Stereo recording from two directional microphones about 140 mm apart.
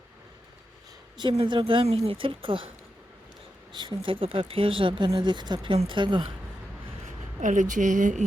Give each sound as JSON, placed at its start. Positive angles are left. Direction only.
{"t": 1.3, "sound": "a woman's voice", "side_deg": -40}
{"t": 3.7, "sound": "a woman's voice", "side_deg": -35}
{"t": 7.4, "sound": "speech", "side_deg": -65}